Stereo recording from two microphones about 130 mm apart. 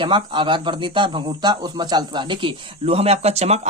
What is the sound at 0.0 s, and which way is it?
A man's voice, 40° right (ahead or behind).